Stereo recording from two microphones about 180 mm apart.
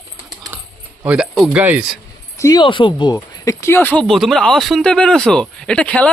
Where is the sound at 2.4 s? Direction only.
20° left (ahead or behind).